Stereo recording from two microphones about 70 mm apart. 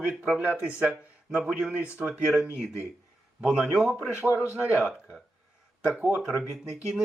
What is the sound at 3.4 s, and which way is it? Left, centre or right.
Speech, centre.